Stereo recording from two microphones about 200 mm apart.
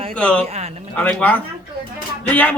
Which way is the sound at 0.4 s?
30° right (ahead or behind).